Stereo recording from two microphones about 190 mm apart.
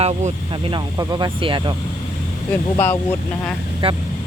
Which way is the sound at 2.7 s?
10° left (ahead or behind).